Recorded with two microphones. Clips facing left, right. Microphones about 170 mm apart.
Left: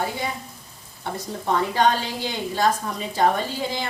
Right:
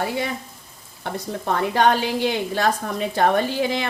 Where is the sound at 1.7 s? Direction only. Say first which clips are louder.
Right 3 dB; 60° right (ahead or behind).